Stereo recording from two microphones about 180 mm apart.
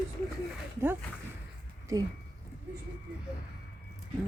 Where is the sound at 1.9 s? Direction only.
20° right (ahead or behind).